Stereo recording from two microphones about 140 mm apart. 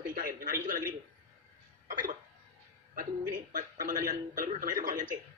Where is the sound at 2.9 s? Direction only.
70° right (ahead or behind).